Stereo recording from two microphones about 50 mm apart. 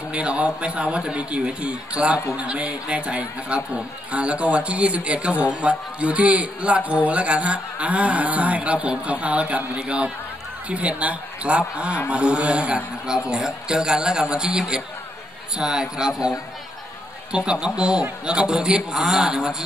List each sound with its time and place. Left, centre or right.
0.1 s a man's voice: right